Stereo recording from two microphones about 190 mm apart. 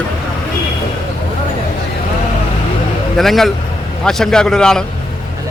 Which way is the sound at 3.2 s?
Centre (ahead or behind).